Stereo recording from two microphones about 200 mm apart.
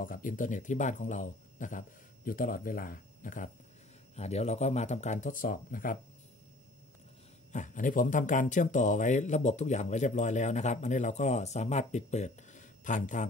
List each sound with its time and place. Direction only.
0.0 s speech: 45° left (ahead or behind)
7.5 s speech: 40° left (ahead or behind)